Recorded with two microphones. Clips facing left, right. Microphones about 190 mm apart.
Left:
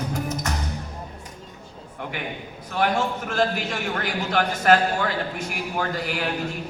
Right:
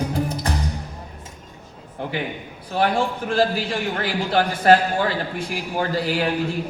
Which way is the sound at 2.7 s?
30° right (ahead or behind).